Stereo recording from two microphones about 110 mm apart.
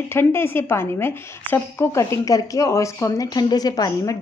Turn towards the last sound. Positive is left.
turn(degrees=35)  # may be behind; listen again after turning